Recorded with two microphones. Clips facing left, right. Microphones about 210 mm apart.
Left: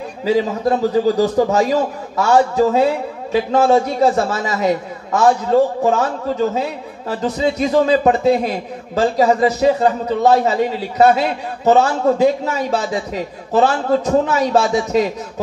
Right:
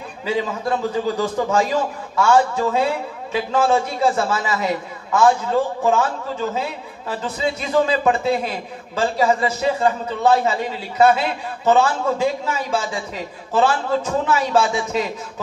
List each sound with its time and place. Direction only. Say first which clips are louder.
0.2 s a man's voice: left 6 dB; 40° left (ahead or behind)